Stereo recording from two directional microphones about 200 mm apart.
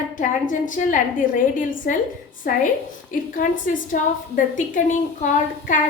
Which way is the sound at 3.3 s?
40° left (ahead or behind).